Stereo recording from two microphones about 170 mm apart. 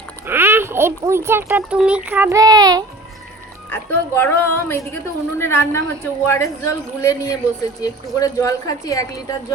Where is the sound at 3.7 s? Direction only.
10° left (ahead or behind).